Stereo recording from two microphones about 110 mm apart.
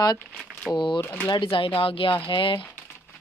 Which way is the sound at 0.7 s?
45° left (ahead or behind).